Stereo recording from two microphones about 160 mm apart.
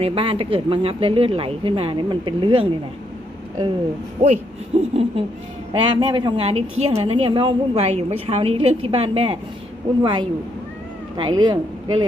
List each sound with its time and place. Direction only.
0.0 s a woman's voice: 35° right (ahead or behind)
4.2 s a woman's voice: 45° right (ahead or behind); by 12.0 s 30° right (ahead or behind)